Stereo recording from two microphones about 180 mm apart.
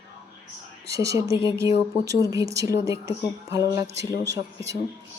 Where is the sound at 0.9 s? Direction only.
15° right (ahead or behind).